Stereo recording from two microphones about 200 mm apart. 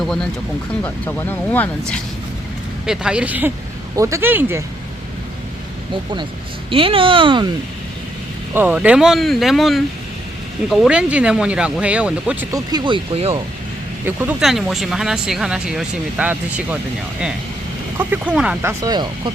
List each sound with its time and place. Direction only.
0.0 s speech: 5° left (ahead or behind)
2.8 s speech: 5° right (ahead or behind)
5.9 s speech: 25° right (ahead or behind)
8.5 s speech: 5° right (ahead or behind); by 13.4 s 30° right (ahead or behind)
14.0 s speech: 10° right (ahead or behind)
17.9 s speech: 10° right (ahead or behind)